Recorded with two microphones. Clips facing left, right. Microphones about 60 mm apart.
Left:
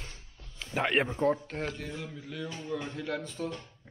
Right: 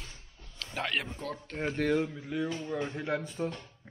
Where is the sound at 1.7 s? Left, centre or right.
Right.